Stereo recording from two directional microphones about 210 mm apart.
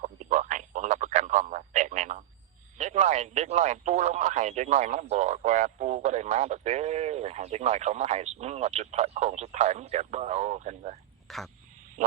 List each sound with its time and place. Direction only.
0.0 s radio: 35° right (ahead or behind)
2.7 s speech: 35° right (ahead or behind)
11.3 s speech: centre (ahead or behind)